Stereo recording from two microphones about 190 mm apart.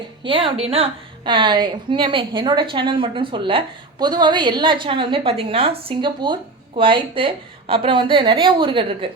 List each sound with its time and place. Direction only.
0.2 s a woman's voice: 25° right (ahead or behind)